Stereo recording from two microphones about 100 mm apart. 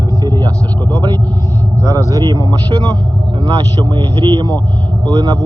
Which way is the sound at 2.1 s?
40° right (ahead or behind).